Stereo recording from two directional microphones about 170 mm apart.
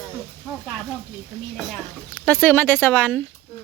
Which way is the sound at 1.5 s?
Centre (ahead or behind).